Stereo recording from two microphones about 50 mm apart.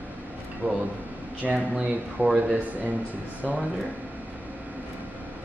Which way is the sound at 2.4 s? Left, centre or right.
Right.